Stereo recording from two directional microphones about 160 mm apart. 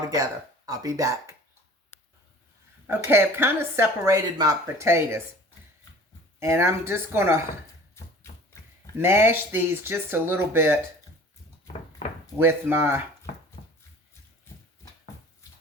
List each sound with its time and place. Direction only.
0.1 s speech: 20° right (ahead or behind)
2.8 s speech: 15° right (ahead or behind)
6.4 s speech: 15° right (ahead or behind)
9.0 s speech: 15° right (ahead or behind)
12.4 s speech: 15° right (ahead or behind)
13.6 s a sound: 55° left (ahead or behind)